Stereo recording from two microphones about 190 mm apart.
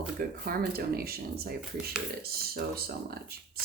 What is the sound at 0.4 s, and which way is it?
Speech, 55° right (ahead or behind).